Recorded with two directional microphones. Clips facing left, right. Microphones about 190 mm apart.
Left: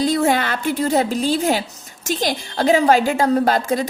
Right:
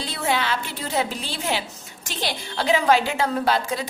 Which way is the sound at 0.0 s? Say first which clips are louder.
Left 8 dB; 45° left (ahead or behind).